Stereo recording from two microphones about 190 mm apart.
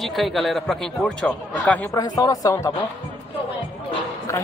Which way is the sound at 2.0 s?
20° left (ahead or behind).